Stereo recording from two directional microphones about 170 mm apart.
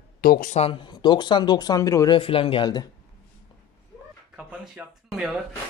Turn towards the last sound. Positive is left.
turn(degrees=-5)  # may be behind; listen again after turning